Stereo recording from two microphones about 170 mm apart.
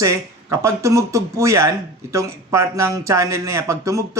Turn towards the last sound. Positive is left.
turn(degrees=-15)  # may be behind; listen again after turning